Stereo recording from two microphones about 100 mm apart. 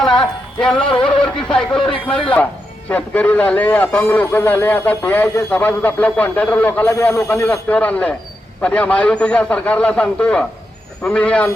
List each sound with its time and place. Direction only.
0.0 s music: 5° left (ahead or behind)
1.0 s a man's voice: 10° left (ahead or behind)
1.8 s speech: 60° left (ahead or behind)
2.9 s a man's voice: 15° left (ahead or behind)
7.1 s speech: 30° left (ahead or behind)
7.7 s a man's voice: 15° left (ahead or behind)